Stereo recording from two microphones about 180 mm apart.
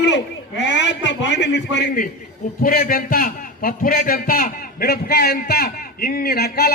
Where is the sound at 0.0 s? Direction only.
85° left.